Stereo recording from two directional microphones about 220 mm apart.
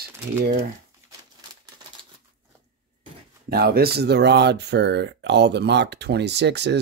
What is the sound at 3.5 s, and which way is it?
Speech, 45° right (ahead or behind).